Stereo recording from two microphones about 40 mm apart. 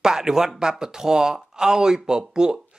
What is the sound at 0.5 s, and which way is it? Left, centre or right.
Speech, centre.